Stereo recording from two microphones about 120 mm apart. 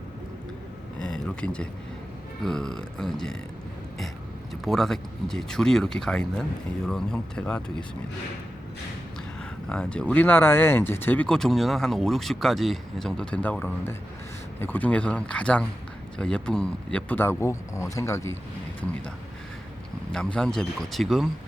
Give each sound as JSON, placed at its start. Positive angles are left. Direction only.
{"t": 0.9, "sound": "a sound", "side_deg": 5}
{"t": 2.4, "sound": "speech", "side_deg": 5}
{"t": 4.6, "sound": "speech", "side_deg": 5}
{"t": 9.6, "sound": "speech", "side_deg": 10}
{"t": 20.1, "sound": "speech", "side_deg": 5}